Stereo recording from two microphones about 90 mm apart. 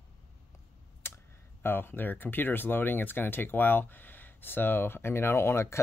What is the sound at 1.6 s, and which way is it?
Speech, 25° left (ahead or behind).